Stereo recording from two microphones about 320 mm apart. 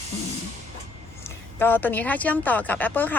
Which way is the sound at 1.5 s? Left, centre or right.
Centre.